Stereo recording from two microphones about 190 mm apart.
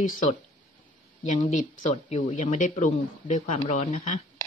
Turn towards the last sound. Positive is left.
turn(degrees=40)  # may be behind; listen again after turning